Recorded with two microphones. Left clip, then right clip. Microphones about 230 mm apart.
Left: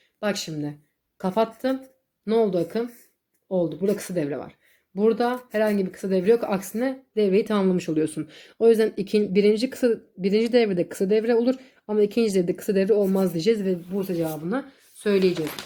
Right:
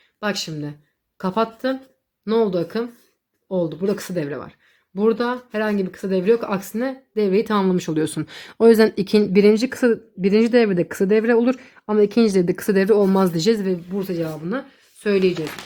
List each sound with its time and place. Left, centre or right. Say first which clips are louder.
0.2 s speech: right 2 dB; centre